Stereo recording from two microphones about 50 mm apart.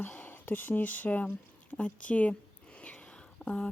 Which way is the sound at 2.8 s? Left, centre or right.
Left.